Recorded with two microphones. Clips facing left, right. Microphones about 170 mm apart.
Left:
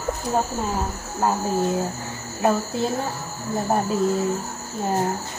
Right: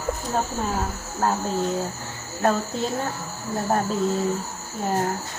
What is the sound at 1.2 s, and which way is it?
Speech, 10° left (ahead or behind).